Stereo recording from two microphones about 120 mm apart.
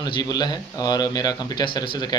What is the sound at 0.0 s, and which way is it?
Speech, 35° left (ahead or behind).